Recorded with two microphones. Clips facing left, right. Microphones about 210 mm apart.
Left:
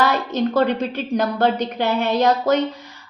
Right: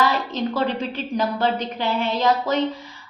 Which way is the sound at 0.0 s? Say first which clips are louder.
Left 3 dB; 70° left (ahead or behind).